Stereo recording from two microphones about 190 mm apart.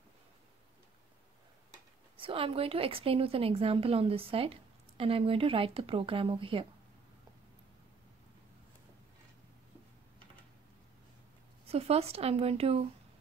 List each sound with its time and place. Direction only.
2.1 s a woman's voice: 30° right (ahead or behind)
11.6 s a woman's voice: 30° right (ahead or behind)